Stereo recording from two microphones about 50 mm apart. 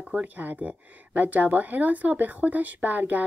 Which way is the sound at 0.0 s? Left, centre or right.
Right.